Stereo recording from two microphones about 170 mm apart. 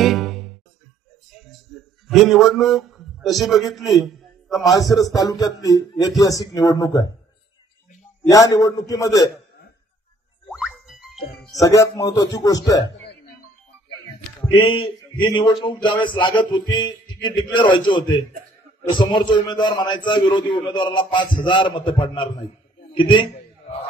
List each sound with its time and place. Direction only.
0.0 s music: centre (ahead or behind)
1.3 s a sound: centre (ahead or behind)
4.6 s a man's voice: 20° left (ahead or behind)
8.3 s a man's voice: 20° left (ahead or behind)
10.5 s music: 5° right (ahead or behind)
11.6 s a man's voice: 20° left (ahead or behind)
14.5 s a man's voice: 30° left (ahead or behind)